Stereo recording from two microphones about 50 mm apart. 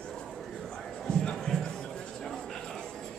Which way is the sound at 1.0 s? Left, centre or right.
Centre.